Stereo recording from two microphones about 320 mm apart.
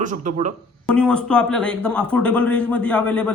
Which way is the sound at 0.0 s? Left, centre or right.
Right.